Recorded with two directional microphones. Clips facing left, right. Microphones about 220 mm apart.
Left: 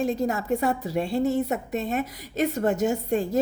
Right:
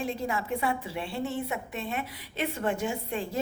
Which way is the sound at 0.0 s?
40° left (ahead or behind).